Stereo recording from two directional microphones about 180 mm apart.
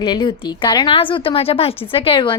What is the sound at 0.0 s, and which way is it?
A woman's voice, 25° left (ahead or behind).